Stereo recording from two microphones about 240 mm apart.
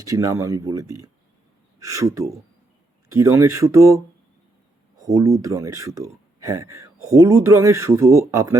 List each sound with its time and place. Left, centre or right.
0.0 s speech: centre
5.0 s speech: centre